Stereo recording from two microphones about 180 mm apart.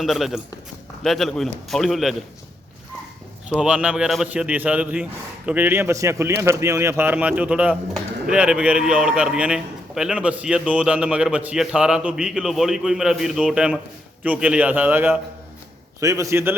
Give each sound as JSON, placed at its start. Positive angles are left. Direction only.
{"t": 0.0, "sound": "speech", "side_deg": 0}
{"t": 3.5, "sound": "a man's voice", "side_deg": -5}